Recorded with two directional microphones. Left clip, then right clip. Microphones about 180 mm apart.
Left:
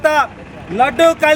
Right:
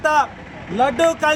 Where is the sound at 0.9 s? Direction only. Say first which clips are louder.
Left 8 dB; 10° left (ahead or behind).